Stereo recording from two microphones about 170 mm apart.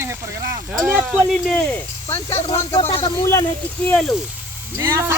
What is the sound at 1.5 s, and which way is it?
Speech, 10° left (ahead or behind).